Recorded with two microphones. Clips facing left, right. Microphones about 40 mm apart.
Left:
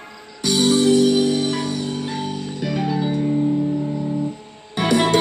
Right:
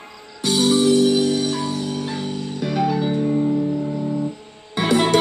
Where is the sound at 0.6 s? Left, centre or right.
Left.